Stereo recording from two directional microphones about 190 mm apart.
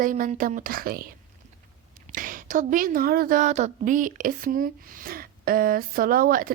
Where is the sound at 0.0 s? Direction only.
45° right (ahead or behind).